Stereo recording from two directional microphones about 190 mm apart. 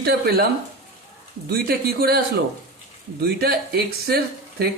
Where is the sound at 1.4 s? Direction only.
55° right (ahead or behind).